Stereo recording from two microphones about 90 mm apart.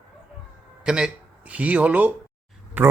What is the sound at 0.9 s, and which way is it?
Speech, 10° right (ahead or behind).